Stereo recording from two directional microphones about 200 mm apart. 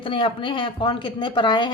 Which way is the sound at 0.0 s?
25° left (ahead or behind).